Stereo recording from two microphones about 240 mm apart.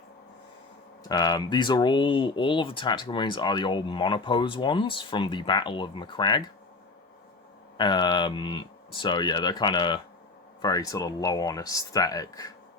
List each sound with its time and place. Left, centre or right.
1.0 s speech: centre
7.8 s speech: centre